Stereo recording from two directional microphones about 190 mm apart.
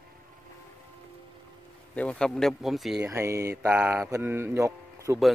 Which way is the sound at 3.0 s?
15° right (ahead or behind).